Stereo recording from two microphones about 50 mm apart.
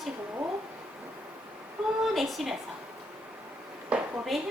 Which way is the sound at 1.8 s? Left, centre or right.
Centre.